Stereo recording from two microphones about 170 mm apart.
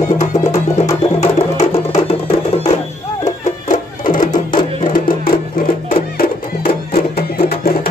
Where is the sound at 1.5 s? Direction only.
35° left (ahead or behind).